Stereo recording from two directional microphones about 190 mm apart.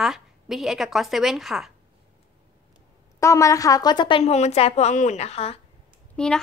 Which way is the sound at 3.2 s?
15° left (ahead or behind).